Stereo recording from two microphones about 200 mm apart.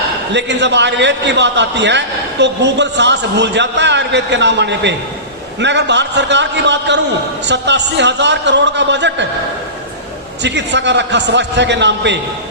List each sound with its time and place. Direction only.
0.3 s a man's voice: 60° right (ahead or behind)
10.4 s a man's voice: 60° right (ahead or behind)